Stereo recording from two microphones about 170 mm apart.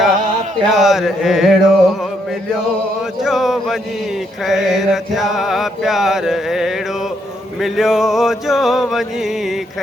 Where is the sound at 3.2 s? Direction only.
Centre (ahead or behind).